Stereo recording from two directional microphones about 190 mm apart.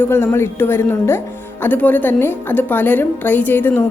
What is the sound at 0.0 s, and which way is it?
A woman's voice, 10° left (ahead or behind).